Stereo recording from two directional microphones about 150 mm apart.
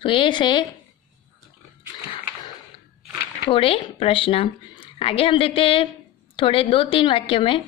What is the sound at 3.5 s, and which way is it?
A woman's voice, 40° left (ahead or behind).